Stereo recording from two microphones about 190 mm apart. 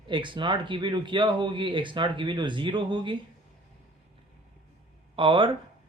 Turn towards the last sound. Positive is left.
turn(degrees=-25)  # may be behind; listen again after turning